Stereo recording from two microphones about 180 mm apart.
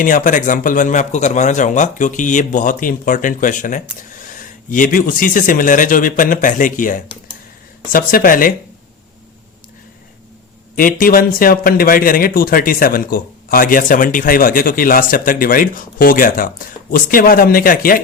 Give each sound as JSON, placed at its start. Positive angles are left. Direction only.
{"t": 0.0, "sound": "a man's voice", "side_deg": 45}
{"t": 10.8, "sound": "a man's voice", "side_deg": 50}